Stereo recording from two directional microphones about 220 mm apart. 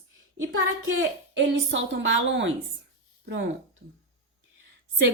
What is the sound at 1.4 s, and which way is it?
A woman's voice, 60° right (ahead or behind).